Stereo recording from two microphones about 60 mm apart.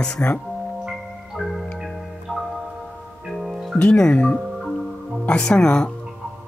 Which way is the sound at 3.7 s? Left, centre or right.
Centre.